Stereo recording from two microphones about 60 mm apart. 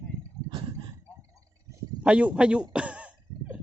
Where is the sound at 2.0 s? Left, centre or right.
Right.